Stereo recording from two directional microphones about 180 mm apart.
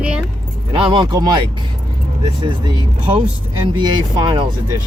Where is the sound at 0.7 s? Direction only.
25° right (ahead or behind).